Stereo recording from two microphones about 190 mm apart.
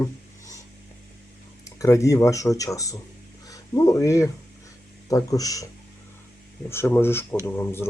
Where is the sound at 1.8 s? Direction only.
15° left (ahead or behind).